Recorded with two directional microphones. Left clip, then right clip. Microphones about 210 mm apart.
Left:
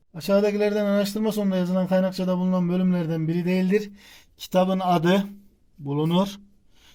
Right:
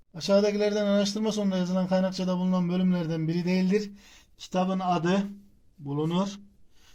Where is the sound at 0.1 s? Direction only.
25° left (ahead or behind).